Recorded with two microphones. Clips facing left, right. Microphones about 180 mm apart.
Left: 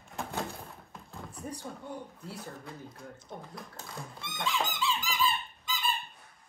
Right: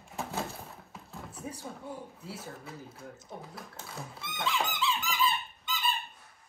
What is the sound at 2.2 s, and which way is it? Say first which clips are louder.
Speech: even; 5° right (ahead or behind).